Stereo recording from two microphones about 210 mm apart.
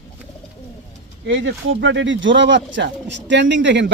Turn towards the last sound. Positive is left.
turn(degrees=-60)  # may be behind; listen again after turning